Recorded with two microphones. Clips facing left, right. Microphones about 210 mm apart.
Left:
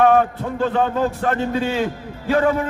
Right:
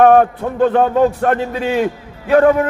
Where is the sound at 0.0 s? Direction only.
55° right (ahead or behind).